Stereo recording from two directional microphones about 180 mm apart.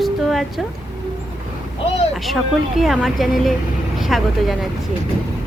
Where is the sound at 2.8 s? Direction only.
Centre (ahead or behind).